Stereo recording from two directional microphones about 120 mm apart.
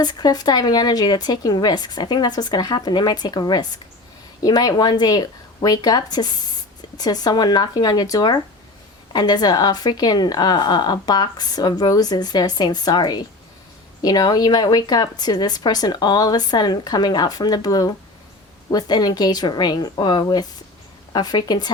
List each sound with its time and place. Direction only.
0.0 s a woman's voice: 35° left (ahead or behind)